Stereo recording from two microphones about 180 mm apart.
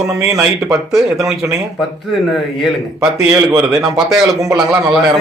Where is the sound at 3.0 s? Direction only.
15° right (ahead or behind).